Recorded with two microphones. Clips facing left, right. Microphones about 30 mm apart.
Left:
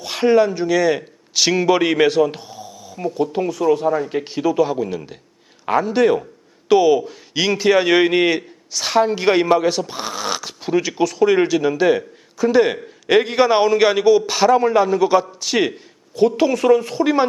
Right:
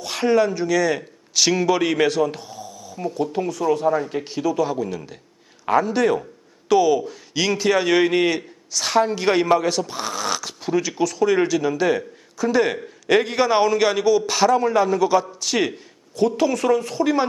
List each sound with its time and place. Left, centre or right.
0.0 s a man's voice: centre
4.1 s a man's voice: centre